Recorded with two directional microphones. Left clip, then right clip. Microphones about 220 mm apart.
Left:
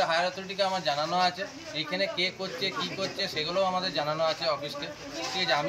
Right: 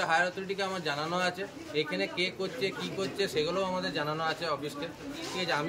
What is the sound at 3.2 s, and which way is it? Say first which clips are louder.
Speech: right 3 dB; 25° right (ahead or behind).